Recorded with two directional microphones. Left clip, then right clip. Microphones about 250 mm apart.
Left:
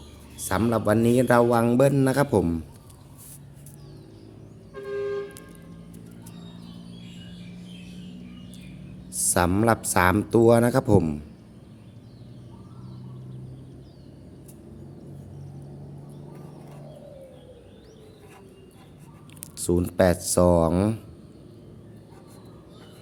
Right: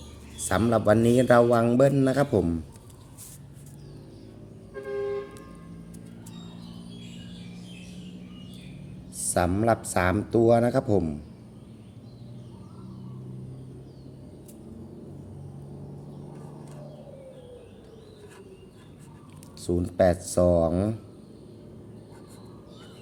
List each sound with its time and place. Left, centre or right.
0.3 s speech: centre
9.0 s speech: centre
19.5 s speech: left